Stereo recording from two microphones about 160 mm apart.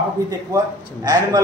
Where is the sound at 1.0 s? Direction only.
25° right (ahead or behind).